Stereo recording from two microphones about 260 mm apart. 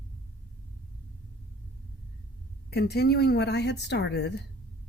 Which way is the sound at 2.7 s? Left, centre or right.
Left.